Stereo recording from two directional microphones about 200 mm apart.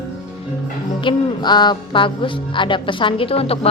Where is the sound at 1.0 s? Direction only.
20° left (ahead or behind).